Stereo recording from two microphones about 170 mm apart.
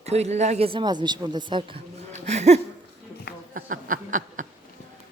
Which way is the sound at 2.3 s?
40° right (ahead or behind).